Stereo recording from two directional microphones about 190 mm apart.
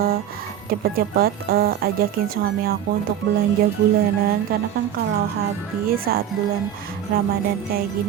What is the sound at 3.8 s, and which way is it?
Speech, 60° right (ahead or behind).